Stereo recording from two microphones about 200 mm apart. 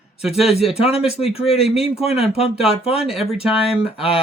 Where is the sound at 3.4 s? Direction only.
5° right (ahead or behind).